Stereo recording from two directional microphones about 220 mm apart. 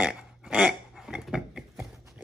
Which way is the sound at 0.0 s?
5° right (ahead or behind).